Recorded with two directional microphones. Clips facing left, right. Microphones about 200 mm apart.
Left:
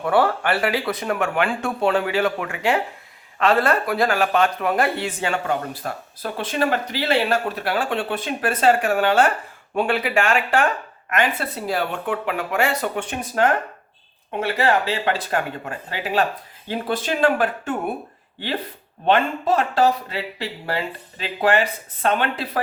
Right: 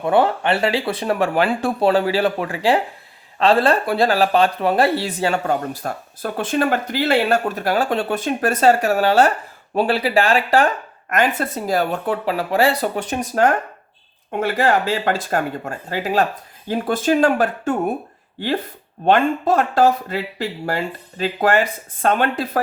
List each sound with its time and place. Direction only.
0.0 s speech: 20° right (ahead or behind); by 17.9 s 40° right (ahead or behind)
19.0 s speech: 50° right (ahead or behind)